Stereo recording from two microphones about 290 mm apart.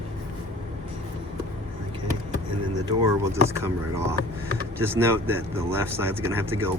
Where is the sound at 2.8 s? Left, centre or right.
Centre.